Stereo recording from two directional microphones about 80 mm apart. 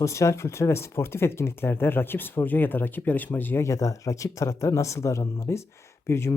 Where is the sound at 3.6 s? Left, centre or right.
Left.